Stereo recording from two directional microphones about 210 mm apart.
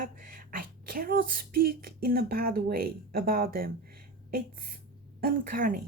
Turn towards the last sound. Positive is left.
turn(degrees=-40)  # may be behind; listen again after turning